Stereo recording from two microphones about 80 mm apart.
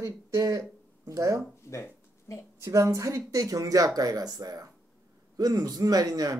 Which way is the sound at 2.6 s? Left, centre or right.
Right.